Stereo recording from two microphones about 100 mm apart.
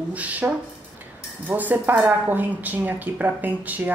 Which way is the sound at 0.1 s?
15° right (ahead or behind).